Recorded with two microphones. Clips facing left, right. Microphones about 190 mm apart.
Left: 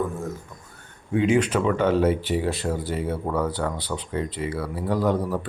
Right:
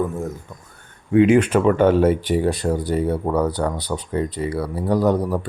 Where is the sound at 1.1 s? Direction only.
60° right (ahead or behind).